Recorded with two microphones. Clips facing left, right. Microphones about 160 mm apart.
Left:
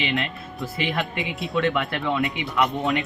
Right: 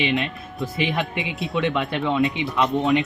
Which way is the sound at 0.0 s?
15° right (ahead or behind).